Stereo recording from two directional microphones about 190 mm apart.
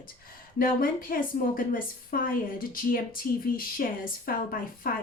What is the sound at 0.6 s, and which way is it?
Speech, 50° left (ahead or behind).